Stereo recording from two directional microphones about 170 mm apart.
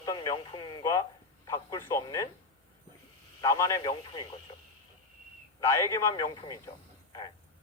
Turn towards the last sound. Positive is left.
turn(degrees=20)  # may be behind; listen again after turning